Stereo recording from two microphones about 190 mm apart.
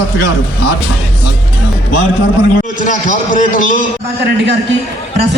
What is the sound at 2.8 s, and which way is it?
Speech, 40° left (ahead or behind).